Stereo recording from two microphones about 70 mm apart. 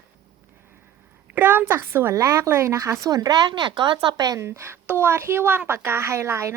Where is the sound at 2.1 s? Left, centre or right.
Right.